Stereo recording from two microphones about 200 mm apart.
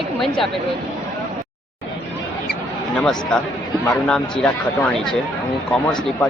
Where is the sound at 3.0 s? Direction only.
5° left (ahead or behind).